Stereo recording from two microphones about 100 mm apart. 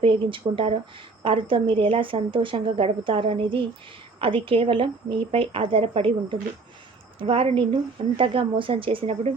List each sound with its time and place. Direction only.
0.0 s a woman's voice: 60° right (ahead or behind); by 9.3 s 75° right (ahead or behind)